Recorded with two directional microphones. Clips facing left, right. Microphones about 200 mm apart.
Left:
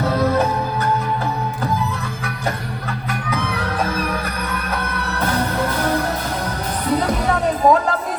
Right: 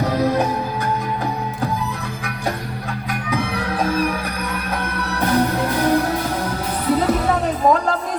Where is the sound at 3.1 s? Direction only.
15° right (ahead or behind).